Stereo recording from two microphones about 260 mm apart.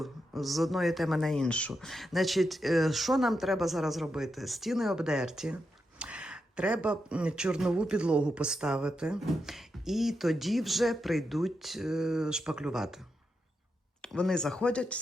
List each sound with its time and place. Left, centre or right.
0.0 s speech: centre
14.0 s speech: centre